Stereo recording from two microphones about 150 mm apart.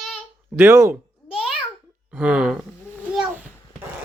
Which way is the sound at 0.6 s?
15° right (ahead or behind).